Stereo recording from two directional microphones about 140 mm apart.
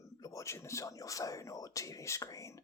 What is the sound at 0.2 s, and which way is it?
Speech, 25° left (ahead or behind).